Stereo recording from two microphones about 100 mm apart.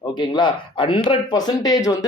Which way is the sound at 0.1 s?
50° left (ahead or behind).